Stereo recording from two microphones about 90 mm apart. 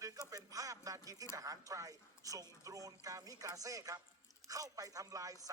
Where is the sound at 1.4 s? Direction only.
40° right (ahead or behind).